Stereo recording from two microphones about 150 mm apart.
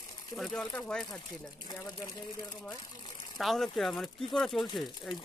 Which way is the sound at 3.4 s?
Centre (ahead or behind).